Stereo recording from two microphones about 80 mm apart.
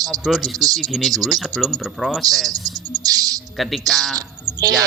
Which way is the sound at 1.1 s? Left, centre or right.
Right.